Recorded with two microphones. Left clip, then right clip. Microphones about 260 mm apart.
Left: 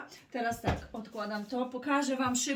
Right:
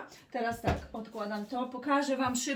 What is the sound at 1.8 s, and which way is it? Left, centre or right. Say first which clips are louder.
Speech: right 2 dB; centre.